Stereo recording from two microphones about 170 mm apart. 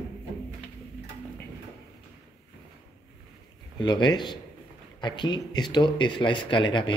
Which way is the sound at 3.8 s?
25° left (ahead or behind).